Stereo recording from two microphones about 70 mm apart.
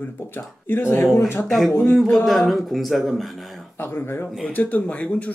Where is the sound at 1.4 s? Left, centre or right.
Centre.